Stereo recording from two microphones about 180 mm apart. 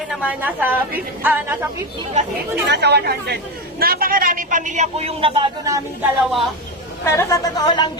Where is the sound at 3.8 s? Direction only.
55° right (ahead or behind); by 5.8 s 25° right (ahead or behind).